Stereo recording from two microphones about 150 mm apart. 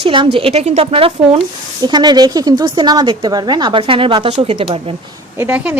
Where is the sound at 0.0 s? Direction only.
35° right (ahead or behind).